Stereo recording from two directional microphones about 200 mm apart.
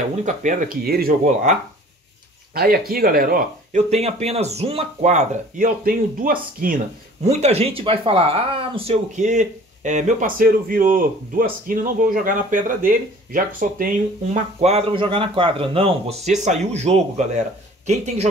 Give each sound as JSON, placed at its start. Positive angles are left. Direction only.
{"t": 0.2, "sound": "speech", "side_deg": -40}
{"t": 2.5, "sound": "speech", "side_deg": -50}
{"t": 3.9, "sound": "speech", "side_deg": -30}
{"t": 7.2, "sound": "speech", "side_deg": -35}
{"t": 14.6, "sound": "speech", "side_deg": -30}